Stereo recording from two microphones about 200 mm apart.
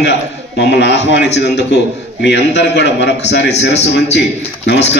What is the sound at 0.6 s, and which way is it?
A man's voice, 60° left (ahead or behind).